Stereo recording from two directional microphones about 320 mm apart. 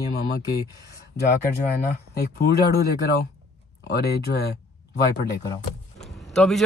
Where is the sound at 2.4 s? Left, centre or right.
Left.